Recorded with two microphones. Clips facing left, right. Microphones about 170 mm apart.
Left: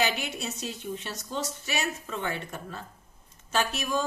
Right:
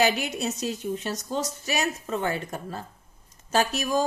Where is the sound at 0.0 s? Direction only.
40° right (ahead or behind).